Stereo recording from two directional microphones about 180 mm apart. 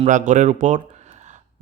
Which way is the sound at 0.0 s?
45° right (ahead or behind).